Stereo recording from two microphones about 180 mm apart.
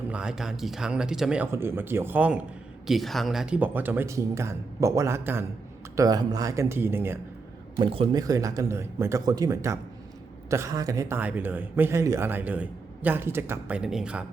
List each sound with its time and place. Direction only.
0.1 s speech: 5° right (ahead or behind)
7.8 s speech: 25° right (ahead or behind); by 14.3 s 5° right (ahead or behind)